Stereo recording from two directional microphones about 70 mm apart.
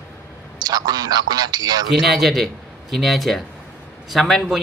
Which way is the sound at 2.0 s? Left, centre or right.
Centre.